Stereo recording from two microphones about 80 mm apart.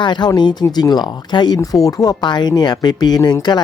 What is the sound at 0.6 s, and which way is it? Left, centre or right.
Speech, left.